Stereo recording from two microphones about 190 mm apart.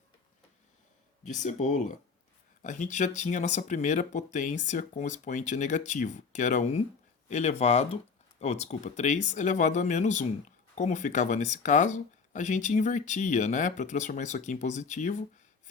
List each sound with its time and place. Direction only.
1.2 s speech: 40° left (ahead or behind)